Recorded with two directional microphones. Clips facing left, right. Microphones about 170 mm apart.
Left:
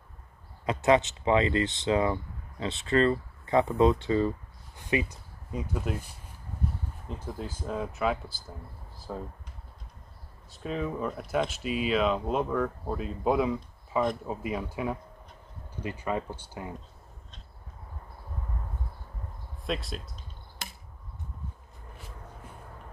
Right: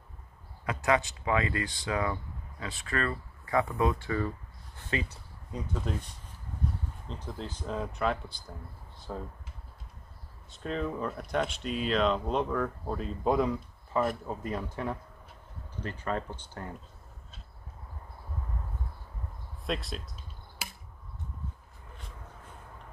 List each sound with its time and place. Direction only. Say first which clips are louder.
0.7 s speech: left 5 dB; 20° left (ahead or behind)
4.7 s a sound: left 5 dB; 15° left (ahead or behind)
5.6 s speech: left 2 dB; 10° left (ahead or behind)
7.1 s speech: left 3 dB; 10° left (ahead or behind)
10.5 s speech: left 1 dB; 5° left (ahead or behind)
19.6 s a sound: left 1 dB; centre (ahead or behind)